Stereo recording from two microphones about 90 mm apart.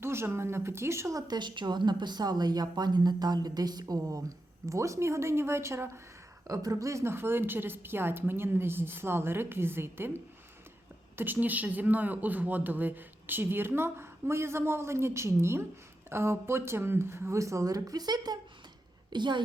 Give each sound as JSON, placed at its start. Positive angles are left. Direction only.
{"t": 0.0, "sound": "speech", "side_deg": -30}
{"t": 1.3, "sound": "a woman's voice", "side_deg": -60}
{"t": 4.6, "sound": "speech", "side_deg": -35}
{"t": 11.2, "sound": "a woman's voice", "side_deg": -20}